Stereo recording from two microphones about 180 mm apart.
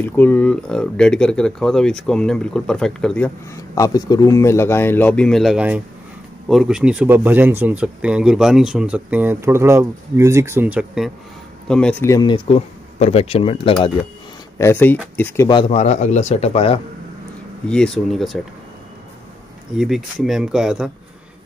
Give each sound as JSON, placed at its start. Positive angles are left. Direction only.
{"t": 0.0, "sound": "speech", "side_deg": 10}
{"t": 3.7, "sound": "a man's voice", "side_deg": 20}
{"t": 11.6, "sound": "speech", "side_deg": 5}
{"t": 12.1, "sound": "speech", "side_deg": 25}
{"t": 14.6, "sound": "a man's voice", "side_deg": 10}
{"t": 15.4, "sound": "speech", "side_deg": 30}
{"t": 17.6, "sound": "speech", "side_deg": 5}
{"t": 19.8, "sound": "speech", "side_deg": 0}